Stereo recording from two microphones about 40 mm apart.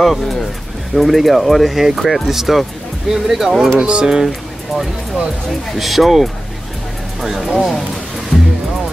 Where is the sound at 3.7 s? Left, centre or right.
Right.